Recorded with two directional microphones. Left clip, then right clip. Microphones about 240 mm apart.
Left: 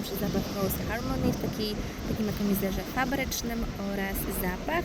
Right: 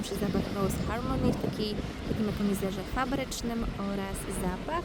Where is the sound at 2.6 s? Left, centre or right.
Right.